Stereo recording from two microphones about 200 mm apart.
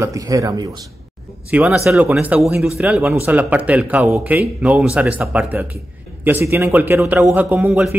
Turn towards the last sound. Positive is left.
turn(degrees=-5)  # may be behind; listen again after turning